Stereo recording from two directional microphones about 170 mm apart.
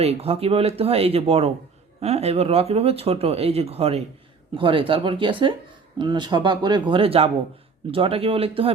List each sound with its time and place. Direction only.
0.0 s speech: 35° right (ahead or behind)